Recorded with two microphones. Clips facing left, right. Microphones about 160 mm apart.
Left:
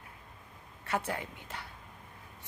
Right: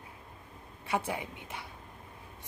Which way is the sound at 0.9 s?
15° right (ahead or behind).